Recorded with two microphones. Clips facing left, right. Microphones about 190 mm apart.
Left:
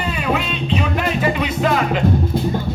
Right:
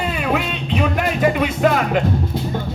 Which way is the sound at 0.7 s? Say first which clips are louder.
Right 1 dB; 50° right (ahead or behind).